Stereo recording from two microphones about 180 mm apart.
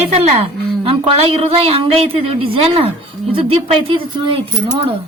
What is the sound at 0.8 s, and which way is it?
A woman's voice, 30° right (ahead or behind).